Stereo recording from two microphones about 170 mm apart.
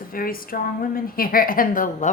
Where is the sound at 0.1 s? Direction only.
60° left (ahead or behind).